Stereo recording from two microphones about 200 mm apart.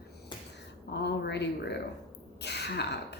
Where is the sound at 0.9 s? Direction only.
60° left (ahead or behind).